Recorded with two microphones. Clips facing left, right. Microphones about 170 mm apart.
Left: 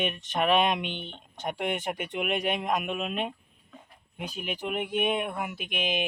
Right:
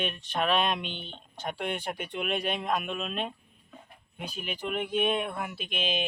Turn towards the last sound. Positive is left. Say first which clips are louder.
# left 1 dB
turn(degrees=15)  # may be behind; listen again after turning